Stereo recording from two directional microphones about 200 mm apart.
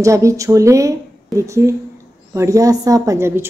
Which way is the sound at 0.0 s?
15° right (ahead or behind).